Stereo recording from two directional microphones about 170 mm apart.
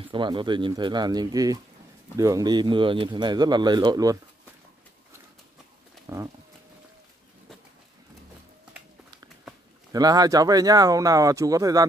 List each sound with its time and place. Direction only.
0.1 s speech: 30° right (ahead or behind)
6.0 s a sound: 15° right (ahead or behind)
9.9 s speech: 20° right (ahead or behind)